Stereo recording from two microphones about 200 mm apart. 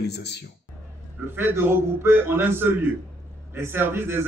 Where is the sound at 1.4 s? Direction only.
10° right (ahead or behind).